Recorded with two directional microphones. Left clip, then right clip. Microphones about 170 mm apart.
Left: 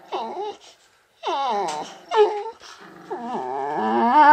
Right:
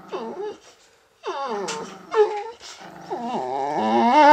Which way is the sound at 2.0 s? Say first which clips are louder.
Left 1 dB; 65° left (ahead or behind).